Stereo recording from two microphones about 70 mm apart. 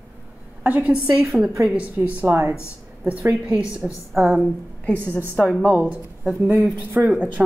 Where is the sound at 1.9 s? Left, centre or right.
Right.